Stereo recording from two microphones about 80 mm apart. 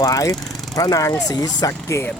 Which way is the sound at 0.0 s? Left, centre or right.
Left.